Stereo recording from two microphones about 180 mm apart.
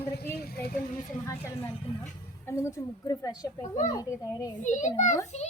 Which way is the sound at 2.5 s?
15° left (ahead or behind).